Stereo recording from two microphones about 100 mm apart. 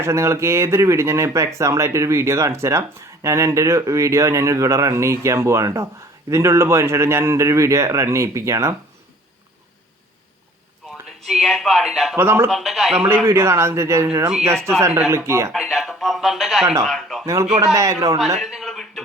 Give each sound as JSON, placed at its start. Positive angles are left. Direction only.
{"t": 0.0, "sound": "a man's voice", "side_deg": -30}
{"t": 10.8, "sound": "a sound", "side_deg": 0}
{"t": 11.3, "sound": "a man's voice", "side_deg": 0}
{"t": 12.1, "sound": "a man's voice", "side_deg": -25}
{"t": 12.5, "sound": "a man's voice", "side_deg": 0}
{"t": 13.2, "sound": "a man's voice", "side_deg": -25}
{"t": 15.5, "sound": "a man's voice", "side_deg": 0}
{"t": 17.7, "sound": "speech", "side_deg": -35}
{"t": 18.3, "sound": "a sound", "side_deg": 0}